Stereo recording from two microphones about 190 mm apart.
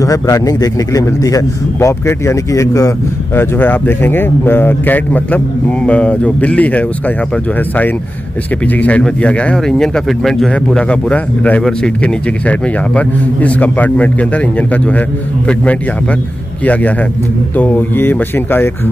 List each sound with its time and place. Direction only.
0.0 s speech: 20° left (ahead or behind)
8.6 s speech: 10° left (ahead or behind)